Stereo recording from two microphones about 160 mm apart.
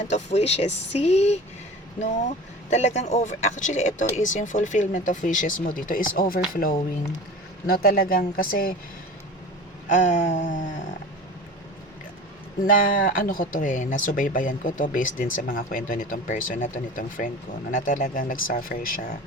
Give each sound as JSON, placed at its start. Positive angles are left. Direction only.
{"t": 0.0, "sound": "speech", "side_deg": 45}
{"t": 9.9, "sound": "speech", "side_deg": 50}
{"t": 12.6, "sound": "speech", "side_deg": 60}